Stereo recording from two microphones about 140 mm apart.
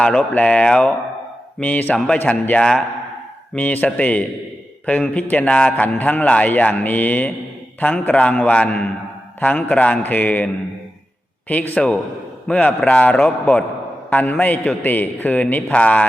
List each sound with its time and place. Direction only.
0.0 s a man's voice: 10° left (ahead or behind)